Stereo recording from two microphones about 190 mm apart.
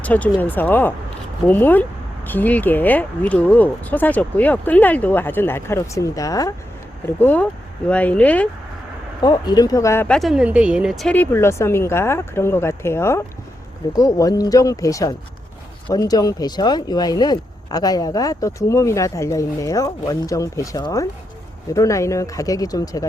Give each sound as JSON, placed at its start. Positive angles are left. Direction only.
{"t": 0.0, "sound": "speech", "side_deg": 10}
{"t": 9.2, "sound": "speech", "side_deg": 20}